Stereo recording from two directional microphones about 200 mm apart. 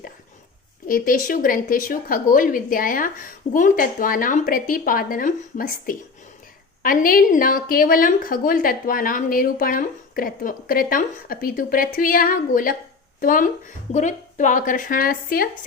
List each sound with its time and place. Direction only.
0.9 s a woman's voice: 45° left (ahead or behind)